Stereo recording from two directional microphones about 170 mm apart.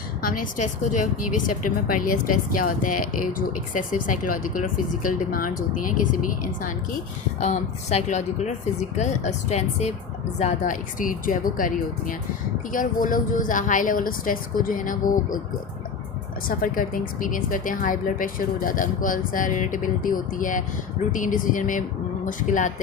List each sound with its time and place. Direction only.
0.9 s speech: 50° left (ahead or behind)
7.3 s speech: 40° left (ahead or behind)
16.5 s speech: 55° left (ahead or behind)